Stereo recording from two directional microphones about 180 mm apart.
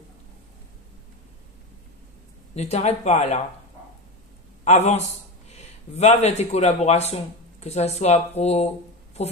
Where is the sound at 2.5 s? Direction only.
40° left (ahead or behind).